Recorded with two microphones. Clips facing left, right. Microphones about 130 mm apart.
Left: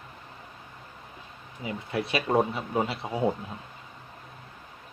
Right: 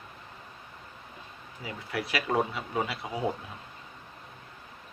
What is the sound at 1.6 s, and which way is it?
Speech, 25° left (ahead or behind).